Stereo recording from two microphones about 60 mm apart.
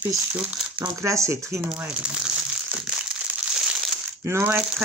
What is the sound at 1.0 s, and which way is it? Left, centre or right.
Speech, right.